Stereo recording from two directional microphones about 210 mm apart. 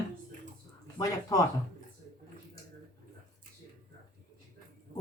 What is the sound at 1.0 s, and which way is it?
Speech, 15° left (ahead or behind).